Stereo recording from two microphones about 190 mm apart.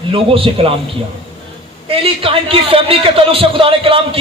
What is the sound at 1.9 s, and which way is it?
A man's voice, 30° right (ahead or behind).